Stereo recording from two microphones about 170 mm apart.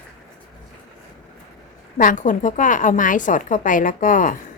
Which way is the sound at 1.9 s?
50° left (ahead or behind).